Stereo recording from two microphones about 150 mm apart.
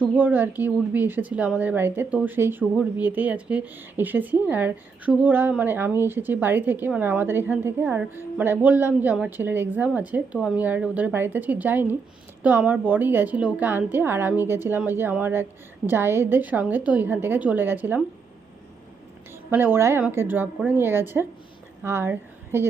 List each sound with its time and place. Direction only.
0.1 s a woman's voice: 10° right (ahead or behind)
19.5 s a woman's voice: 15° right (ahead or behind)